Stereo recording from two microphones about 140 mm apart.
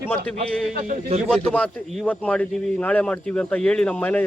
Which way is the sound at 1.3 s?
10° left (ahead or behind).